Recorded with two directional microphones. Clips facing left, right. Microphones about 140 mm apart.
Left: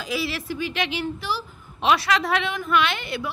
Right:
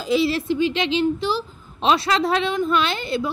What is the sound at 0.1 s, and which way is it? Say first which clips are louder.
A woman's voice: right 9 dB; 25° right (ahead or behind).